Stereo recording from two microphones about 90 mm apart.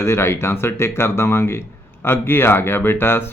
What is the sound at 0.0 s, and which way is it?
Speech, 30° left (ahead or behind).